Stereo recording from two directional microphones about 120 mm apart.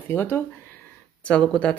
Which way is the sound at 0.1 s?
20° left (ahead or behind).